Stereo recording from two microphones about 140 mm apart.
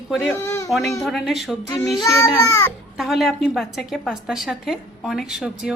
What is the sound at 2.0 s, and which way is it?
Speech, 20° left (ahead or behind).